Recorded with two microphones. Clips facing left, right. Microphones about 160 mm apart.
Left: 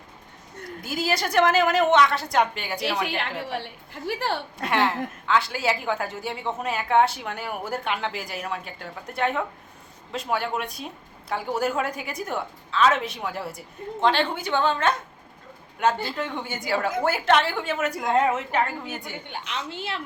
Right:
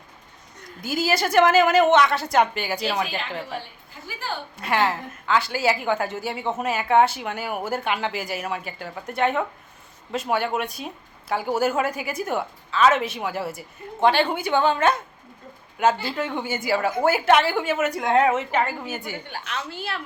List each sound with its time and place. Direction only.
0.8 s speech: centre (ahead or behind)
3.4 s a woman's voice: 70° left (ahead or behind)
4.5 s speech: centre (ahead or behind)
19.3 s a woman's voice: 20° left (ahead or behind)